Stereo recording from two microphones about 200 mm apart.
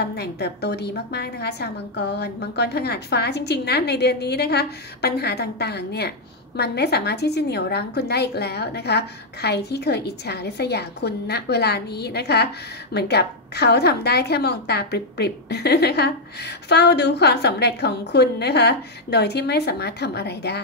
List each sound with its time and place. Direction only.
0.0 s a woman's voice: 55° left (ahead or behind)